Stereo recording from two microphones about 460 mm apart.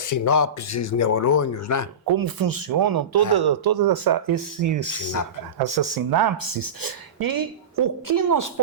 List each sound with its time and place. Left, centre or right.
0.0 s speech: left
2.1 s speech: right
5.6 s a woman's voice: right